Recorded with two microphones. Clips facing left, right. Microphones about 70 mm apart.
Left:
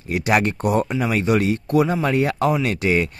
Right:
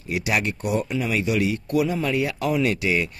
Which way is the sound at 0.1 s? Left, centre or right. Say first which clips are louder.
Left 5 dB; left.